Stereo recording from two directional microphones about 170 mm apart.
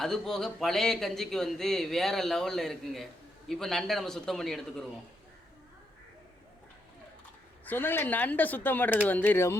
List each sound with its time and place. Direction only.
0.0 s a man's voice: centre (ahead or behind)
7.6 s a woman's voice: 10° left (ahead or behind)